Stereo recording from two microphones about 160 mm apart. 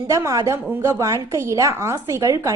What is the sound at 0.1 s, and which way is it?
A woman's voice, 20° right (ahead or behind).